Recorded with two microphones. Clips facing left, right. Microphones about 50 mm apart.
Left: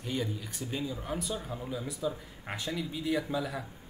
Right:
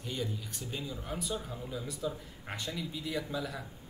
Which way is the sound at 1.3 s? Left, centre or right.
Left.